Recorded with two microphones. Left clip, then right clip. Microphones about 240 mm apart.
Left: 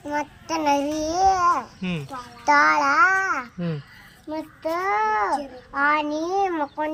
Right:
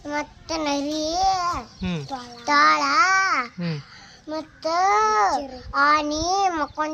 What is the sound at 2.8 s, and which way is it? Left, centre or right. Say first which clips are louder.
Babbling: even; centre.